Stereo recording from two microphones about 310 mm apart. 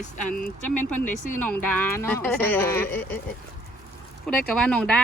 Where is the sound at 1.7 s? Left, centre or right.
Centre.